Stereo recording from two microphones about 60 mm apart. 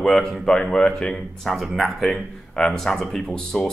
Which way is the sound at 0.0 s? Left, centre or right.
Centre.